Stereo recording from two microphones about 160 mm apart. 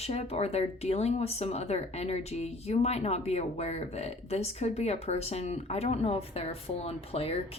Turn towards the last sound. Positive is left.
turn(degrees=40)  # may be behind; listen again after turning